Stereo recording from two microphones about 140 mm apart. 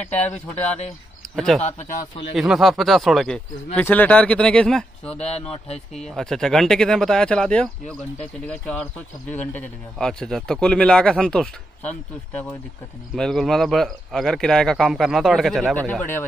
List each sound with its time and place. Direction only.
0.1 s speech: 10° left (ahead or behind)
1.6 s speech: 55° left (ahead or behind)
2.3 s speech: centre (ahead or behind)
5.1 s speech: 50° left (ahead or behind)
5.9 s speech: 5° left (ahead or behind)
13.1 s speech: 5° left (ahead or behind)
15.9 s speech: 10° left (ahead or behind)